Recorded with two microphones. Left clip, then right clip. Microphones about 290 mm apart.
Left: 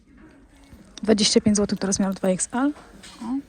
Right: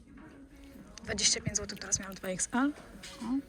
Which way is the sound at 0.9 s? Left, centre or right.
Centre.